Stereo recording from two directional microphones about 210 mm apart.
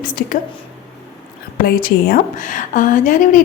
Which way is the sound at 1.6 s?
45° left (ahead or behind).